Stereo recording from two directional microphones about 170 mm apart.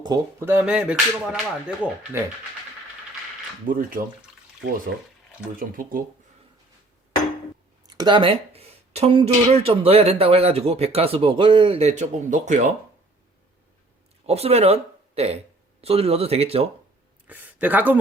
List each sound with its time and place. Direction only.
0.0 s speech: 25° right (ahead or behind)
0.4 s speech: 10° right (ahead or behind)
3.7 s speech: 55° right (ahead or behind)
5.5 s speech: 55° right (ahead or behind)
7.9 s speech: 25° right (ahead or behind); by 12.7 s 45° right (ahead or behind)
14.3 s speech: 35° right (ahead or behind)
17.2 s speech: 10° right (ahead or behind)